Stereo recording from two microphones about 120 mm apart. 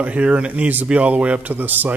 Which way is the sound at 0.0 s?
10° right (ahead or behind).